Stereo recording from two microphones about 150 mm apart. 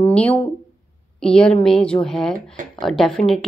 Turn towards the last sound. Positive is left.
turn(degrees=0)  # may be behind; listen again after turning